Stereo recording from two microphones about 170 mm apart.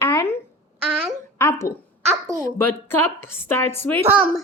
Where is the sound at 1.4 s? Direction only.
15° left (ahead or behind).